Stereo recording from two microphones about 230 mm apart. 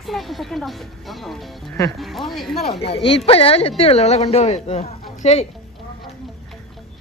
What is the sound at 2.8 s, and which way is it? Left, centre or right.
Speech, left.